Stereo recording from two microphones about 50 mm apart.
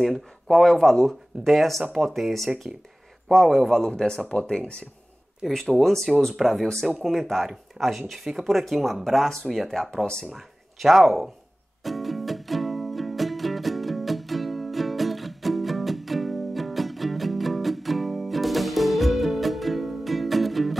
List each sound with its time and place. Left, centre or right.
0.0 s speech: centre
5.5 s speech: centre
7.8 s speech: centre
11.8 s music: centre